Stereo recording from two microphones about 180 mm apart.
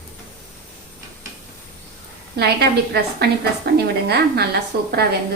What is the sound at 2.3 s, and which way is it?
A woman's voice, 65° right (ahead or behind).